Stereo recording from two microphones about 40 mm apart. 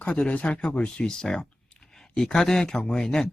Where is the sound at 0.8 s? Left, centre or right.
Left.